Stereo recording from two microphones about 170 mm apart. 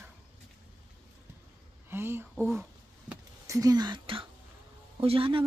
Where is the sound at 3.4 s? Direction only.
20° right (ahead or behind).